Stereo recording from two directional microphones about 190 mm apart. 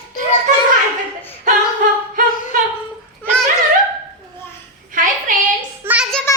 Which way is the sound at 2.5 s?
45° right (ahead or behind).